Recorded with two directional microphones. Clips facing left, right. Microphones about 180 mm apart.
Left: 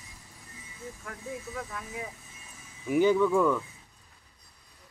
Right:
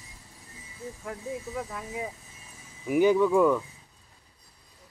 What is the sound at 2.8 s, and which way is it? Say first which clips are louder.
Speech: right 2 dB; 10° right (ahead or behind).